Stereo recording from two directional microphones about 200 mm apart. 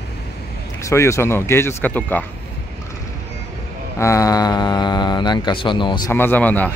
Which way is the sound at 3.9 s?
15° left (ahead or behind).